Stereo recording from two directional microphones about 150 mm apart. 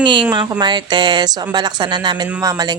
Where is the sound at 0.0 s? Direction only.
30° right (ahead or behind).